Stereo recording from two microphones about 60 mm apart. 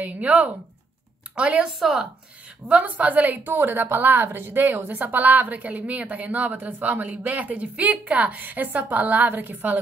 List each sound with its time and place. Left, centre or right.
0.0 s a woman's voice: right
1.8 s speech: centre
2.7 s a woman's voice: right